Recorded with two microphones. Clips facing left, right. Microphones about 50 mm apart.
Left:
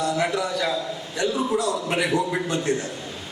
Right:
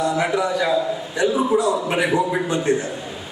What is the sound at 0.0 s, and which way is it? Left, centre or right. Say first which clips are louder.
A man's voice: right 4 dB; centre.